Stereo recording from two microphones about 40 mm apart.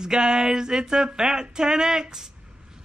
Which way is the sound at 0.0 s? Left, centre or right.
Centre.